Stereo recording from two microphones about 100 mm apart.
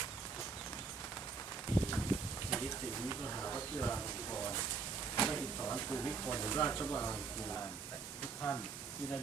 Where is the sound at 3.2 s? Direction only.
20° left (ahead or behind).